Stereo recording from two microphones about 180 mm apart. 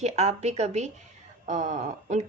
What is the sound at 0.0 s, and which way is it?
A woman's voice, 40° right (ahead or behind).